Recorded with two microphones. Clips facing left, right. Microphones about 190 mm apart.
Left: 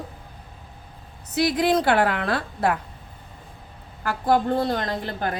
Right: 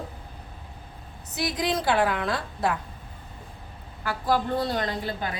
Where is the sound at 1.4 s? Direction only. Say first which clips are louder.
Left 7 dB; 60° left (ahead or behind).